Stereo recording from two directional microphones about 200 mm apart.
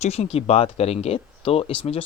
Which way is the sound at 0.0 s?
30° left (ahead or behind).